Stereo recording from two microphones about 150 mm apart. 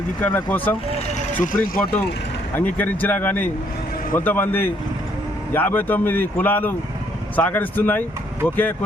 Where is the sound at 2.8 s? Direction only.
10° left (ahead or behind).